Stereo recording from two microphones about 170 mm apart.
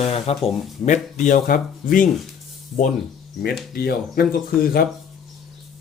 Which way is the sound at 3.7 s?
60° left (ahead or behind).